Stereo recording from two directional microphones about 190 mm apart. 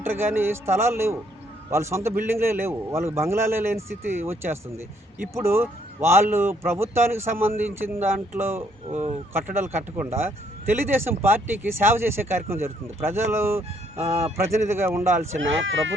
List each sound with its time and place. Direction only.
0.0 s speech: 10° right (ahead or behind)
8.9 s music: 35° right (ahead or behind)
9.3 s speech: 10° right (ahead or behind)
13.6 s music: 35° right (ahead or behind)
14.5 s speech: 15° right (ahead or behind)
15.4 s speech: 85° right